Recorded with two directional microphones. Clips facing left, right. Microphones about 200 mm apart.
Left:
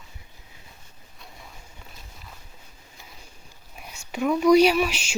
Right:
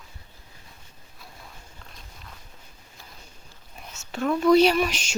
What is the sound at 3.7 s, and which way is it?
Speech, 10° left (ahead or behind).